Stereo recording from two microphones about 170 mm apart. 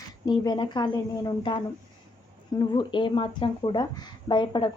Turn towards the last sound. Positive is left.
turn(degrees=30)  # may be behind; listen again after turning